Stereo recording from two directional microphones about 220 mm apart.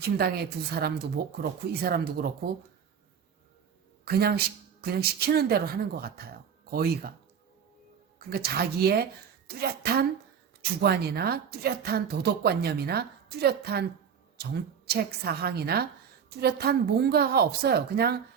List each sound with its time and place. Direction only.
0.0 s a woman's voice: 45° right (ahead or behind)
4.0 s a woman's voice: 45° right (ahead or behind)
8.2 s a woman's voice: 45° right (ahead or behind)
14.8 s a woman's voice: 45° right (ahead or behind)